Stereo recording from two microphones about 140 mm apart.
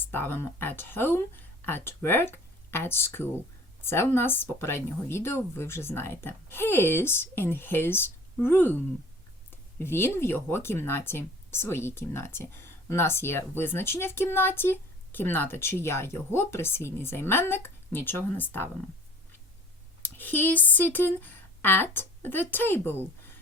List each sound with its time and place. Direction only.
0.0 s speech: 15° left (ahead or behind)
20.0 s speech: 15° left (ahead or behind)